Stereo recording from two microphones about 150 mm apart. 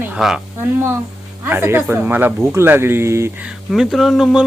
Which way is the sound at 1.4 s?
15° right (ahead or behind).